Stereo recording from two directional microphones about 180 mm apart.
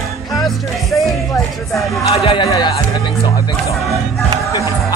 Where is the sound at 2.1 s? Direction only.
30° left (ahead or behind).